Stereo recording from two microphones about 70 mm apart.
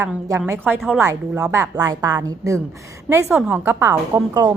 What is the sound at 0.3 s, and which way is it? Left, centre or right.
A woman's voice, right.